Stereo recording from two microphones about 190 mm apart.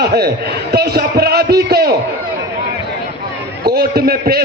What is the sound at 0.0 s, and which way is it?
A man's voice, 55° right (ahead or behind).